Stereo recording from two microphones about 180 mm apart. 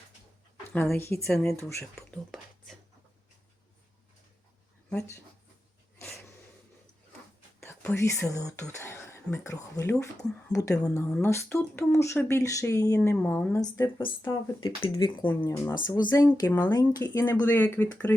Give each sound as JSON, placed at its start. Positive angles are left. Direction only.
{"t": 0.7, "sound": "speech", "side_deg": 10}
{"t": 1.3, "sound": "speech", "side_deg": 5}
{"t": 2.0, "sound": "whispering", "side_deg": 0}
{"t": 6.0, "sound": "wheeze", "side_deg": 0}
{"t": 7.6, "sound": "speech", "side_deg": 10}
{"t": 15.2, "sound": "speech", "side_deg": 10}
{"t": 17.4, "sound": "speech", "side_deg": 10}